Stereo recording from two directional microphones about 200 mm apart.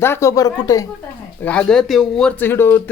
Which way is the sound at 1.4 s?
5° left (ahead or behind).